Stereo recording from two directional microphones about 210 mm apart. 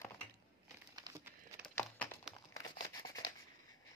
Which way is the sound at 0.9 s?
15° right (ahead or behind).